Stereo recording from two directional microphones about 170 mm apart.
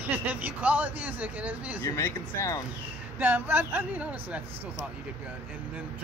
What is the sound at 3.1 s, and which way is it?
Speech, 10° right (ahead or behind).